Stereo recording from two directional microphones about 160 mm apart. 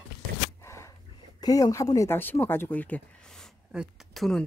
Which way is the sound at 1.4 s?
20° left (ahead or behind).